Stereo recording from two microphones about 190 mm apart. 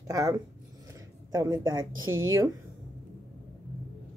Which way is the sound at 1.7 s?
90° right.